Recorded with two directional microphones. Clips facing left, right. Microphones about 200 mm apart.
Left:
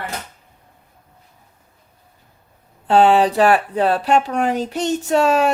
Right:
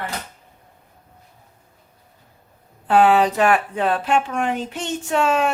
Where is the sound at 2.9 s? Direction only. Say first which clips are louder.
Left 2 dB; 30° left (ahead or behind).